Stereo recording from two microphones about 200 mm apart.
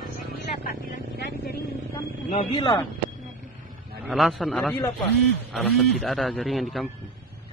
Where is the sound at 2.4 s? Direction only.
20° left (ahead or behind).